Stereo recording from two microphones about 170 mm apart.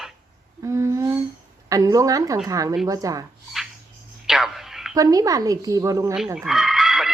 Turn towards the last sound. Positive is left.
turn(degrees=0)  # may be behind; listen again after turning